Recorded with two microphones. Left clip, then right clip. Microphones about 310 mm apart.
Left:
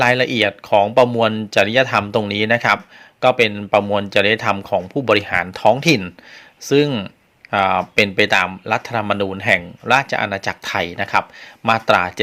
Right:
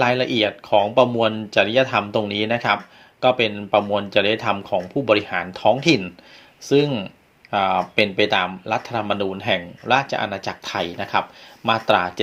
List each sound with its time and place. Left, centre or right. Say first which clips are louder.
0.0 s speech: left 3 dB; left